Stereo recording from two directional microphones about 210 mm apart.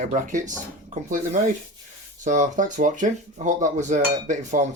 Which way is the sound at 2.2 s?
35° right (ahead or behind).